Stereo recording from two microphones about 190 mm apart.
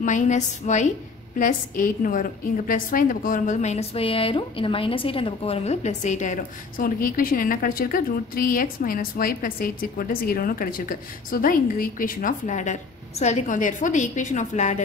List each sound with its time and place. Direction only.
0.0 s a woman's voice: 40° left (ahead or behind)